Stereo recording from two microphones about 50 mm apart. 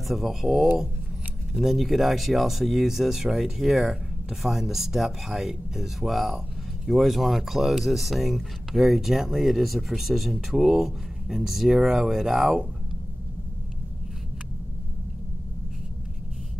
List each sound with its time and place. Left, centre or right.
0.1 s speech: centre